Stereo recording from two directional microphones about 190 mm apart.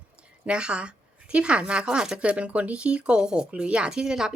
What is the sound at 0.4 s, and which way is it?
A woman's voice, 5° right (ahead or behind).